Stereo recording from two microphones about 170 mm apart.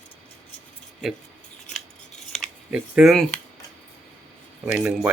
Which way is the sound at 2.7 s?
5° right (ahead or behind).